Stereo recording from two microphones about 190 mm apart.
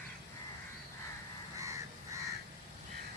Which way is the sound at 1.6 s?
15° right (ahead or behind).